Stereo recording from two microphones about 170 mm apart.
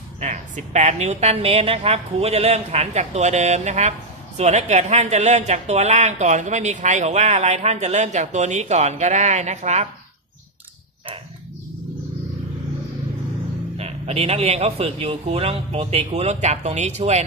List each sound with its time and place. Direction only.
0.2 s a woman's voice: 45° right (ahead or behind)
13.7 s a woman's voice: 35° right (ahead or behind)